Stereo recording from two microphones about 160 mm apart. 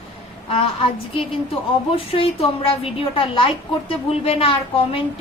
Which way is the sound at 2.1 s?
35° left (ahead or behind).